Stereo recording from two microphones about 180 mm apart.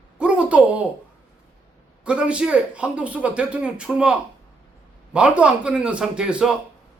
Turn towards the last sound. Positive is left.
turn(degrees=-5)  # may be behind; listen again after turning